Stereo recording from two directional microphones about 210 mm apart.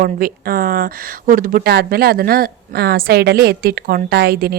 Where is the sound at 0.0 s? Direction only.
45° right (ahead or behind).